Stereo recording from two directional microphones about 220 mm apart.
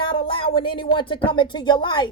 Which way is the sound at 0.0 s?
20° left (ahead or behind).